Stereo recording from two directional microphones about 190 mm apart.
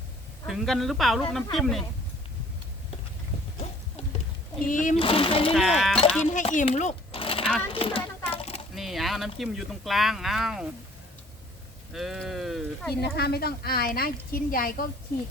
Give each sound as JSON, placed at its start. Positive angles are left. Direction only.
{"t": 0.4, "sound": "speech", "side_deg": 0}
{"t": 4.6, "sound": "a woman's voice", "side_deg": 45}
{"t": 4.9, "sound": "speech", "side_deg": 30}
{"t": 5.5, "sound": "speech", "side_deg": 0}
{"t": 6.3, "sound": "speech", "side_deg": 40}
{"t": 8.3, "sound": "a sound", "side_deg": 30}
{"t": 8.7, "sound": "speech", "side_deg": 0}
{"t": 11.9, "sound": "speech", "side_deg": 0}
{"t": 12.9, "sound": "a woman's voice", "side_deg": 55}